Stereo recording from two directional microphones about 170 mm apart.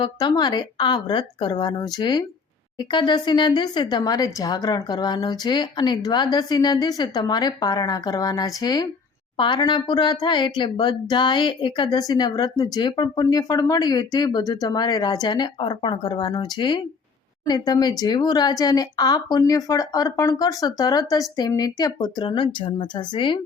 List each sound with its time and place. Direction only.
0.0 s speech: 25° left (ahead or behind)